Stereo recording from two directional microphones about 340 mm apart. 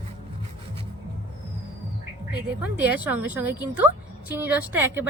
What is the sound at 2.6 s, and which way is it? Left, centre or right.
Speech, centre.